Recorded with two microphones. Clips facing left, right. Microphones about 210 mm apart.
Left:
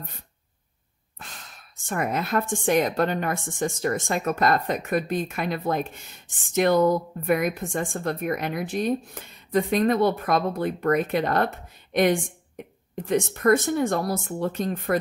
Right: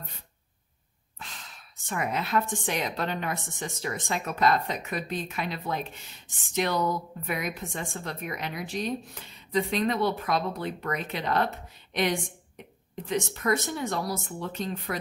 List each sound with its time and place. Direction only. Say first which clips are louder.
1.1 s speech: left 1 dB; 50° left (ahead or behind)